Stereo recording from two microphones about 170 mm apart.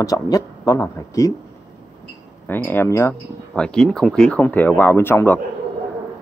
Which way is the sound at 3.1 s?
5° left (ahead or behind).